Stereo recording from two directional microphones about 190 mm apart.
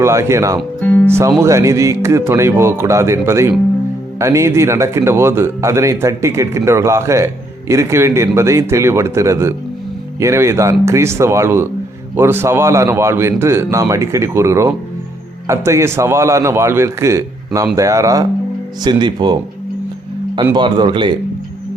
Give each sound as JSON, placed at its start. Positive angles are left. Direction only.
{"t": 0.0, "sound": "speech", "side_deg": -15}
{"t": 0.8, "sound": "music", "side_deg": 10}
{"t": 1.0, "sound": "speech", "side_deg": -15}